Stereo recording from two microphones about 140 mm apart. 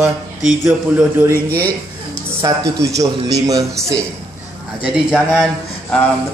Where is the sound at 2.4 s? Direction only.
30° right (ahead or behind).